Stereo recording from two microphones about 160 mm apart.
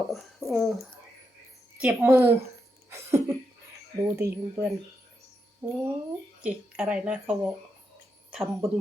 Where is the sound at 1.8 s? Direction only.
20° right (ahead or behind).